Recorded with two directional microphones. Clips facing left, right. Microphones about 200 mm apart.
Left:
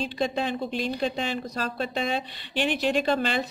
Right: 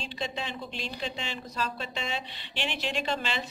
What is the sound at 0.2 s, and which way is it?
Speech, 50° left (ahead or behind).